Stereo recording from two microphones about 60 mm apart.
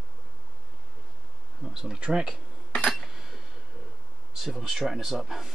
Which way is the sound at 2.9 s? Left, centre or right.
Centre.